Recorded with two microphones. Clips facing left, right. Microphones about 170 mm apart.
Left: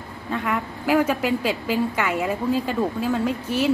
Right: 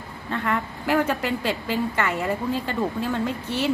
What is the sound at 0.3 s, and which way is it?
A woman's voice, 10° left (ahead or behind).